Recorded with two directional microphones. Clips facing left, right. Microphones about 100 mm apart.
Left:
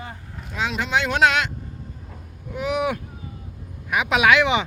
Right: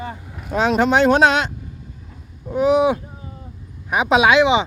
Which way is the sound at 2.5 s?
35° right (ahead or behind).